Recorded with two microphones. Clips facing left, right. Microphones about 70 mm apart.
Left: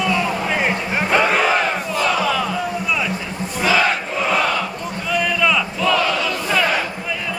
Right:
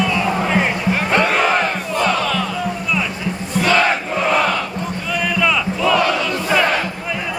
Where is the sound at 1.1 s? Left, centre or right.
Centre.